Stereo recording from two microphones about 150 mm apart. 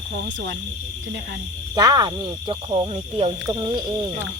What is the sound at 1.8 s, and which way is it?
Speech, 25° right (ahead or behind).